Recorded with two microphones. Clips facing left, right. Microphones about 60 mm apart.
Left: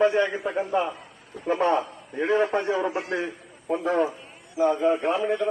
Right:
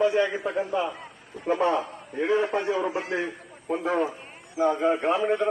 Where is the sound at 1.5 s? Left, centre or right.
Left.